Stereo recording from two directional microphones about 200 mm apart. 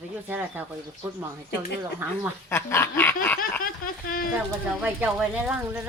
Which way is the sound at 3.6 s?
45° left (ahead or behind).